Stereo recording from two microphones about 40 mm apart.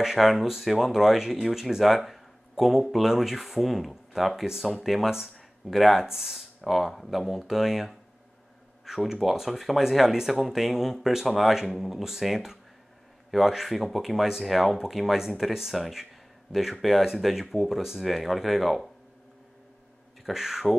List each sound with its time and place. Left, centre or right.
0.0 s speech: centre
20.2 s speech: centre